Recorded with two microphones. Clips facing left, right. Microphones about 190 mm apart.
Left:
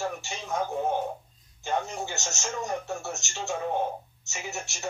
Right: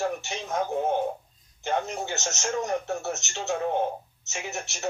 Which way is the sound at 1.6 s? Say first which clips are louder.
Right 2 dB; 20° right (ahead or behind).